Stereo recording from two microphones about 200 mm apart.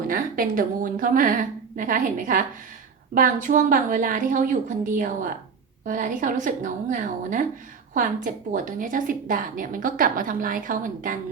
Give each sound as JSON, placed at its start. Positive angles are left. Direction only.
{"t": 0.1, "sound": "a woman's voice", "side_deg": -45}
{"t": 3.4, "sound": "a woman's voice", "side_deg": -40}